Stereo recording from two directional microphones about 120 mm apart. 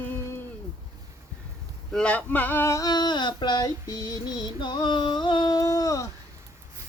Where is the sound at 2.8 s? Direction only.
35° left (ahead or behind).